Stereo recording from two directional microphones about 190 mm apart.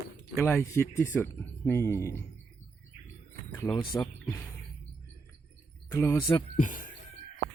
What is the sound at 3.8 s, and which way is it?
Speech, 25° left (ahead or behind).